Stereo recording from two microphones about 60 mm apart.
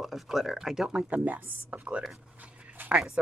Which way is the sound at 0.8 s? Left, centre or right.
Centre.